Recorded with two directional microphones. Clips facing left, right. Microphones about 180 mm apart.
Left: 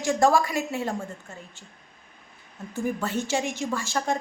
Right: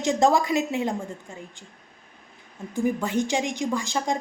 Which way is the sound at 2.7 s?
15° right (ahead or behind).